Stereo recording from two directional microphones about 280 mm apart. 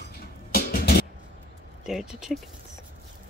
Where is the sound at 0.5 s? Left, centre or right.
Left.